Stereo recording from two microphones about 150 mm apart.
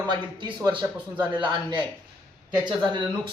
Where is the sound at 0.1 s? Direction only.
30° right (ahead or behind).